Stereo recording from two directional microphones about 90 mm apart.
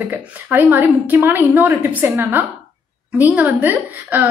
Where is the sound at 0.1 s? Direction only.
20° right (ahead or behind).